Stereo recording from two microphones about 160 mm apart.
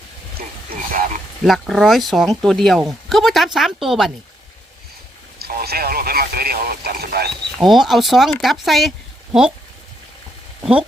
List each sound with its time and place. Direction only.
0.9 s a sound: 60° right (ahead or behind)
1.5 s speech: centre (ahead or behind)
5.4 s speech: 75° right (ahead or behind)
7.6 s speech: centre (ahead or behind)